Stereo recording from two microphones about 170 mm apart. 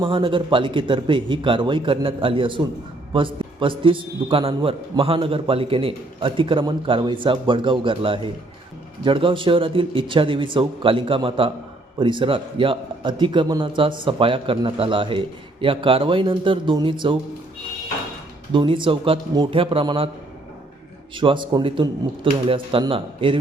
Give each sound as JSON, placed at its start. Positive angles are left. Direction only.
{"t": 0.0, "sound": "a man's voice", "side_deg": -30}
{"t": 18.5, "sound": "a man's voice", "side_deg": -30}
{"t": 21.2, "sound": "a man's voice", "side_deg": -30}